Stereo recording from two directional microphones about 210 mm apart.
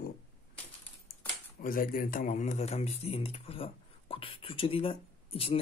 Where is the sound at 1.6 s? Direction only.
40° left (ahead or behind).